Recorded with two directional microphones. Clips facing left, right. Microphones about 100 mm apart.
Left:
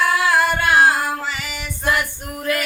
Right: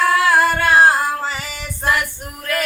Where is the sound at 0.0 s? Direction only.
35° right (ahead or behind).